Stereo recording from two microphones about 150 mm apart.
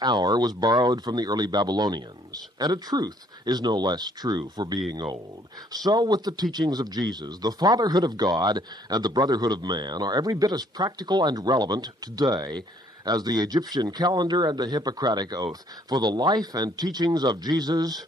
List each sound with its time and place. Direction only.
0.0 s speech: 25° right (ahead or behind)